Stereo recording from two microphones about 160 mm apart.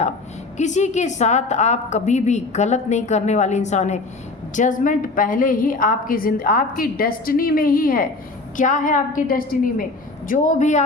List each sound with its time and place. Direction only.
0.5 s a woman's voice: 45° left (ahead or behind)